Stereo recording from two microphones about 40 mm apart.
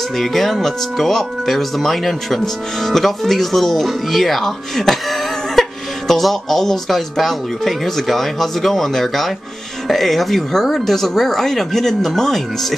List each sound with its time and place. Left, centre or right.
0.2 s speech: centre